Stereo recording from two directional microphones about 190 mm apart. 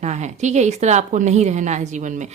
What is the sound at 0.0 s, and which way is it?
A woman's voice, 40° right (ahead or behind).